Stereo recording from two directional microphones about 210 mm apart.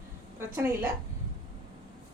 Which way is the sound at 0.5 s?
10° right (ahead or behind).